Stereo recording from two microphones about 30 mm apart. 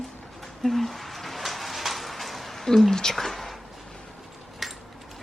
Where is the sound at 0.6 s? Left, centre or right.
Centre.